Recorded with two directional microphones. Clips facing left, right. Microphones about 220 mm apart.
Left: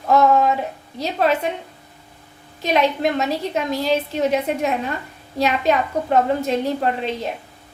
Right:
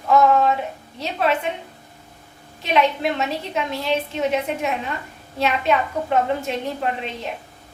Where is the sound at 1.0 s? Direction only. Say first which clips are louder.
Left 2 dB; 40° left (ahead or behind).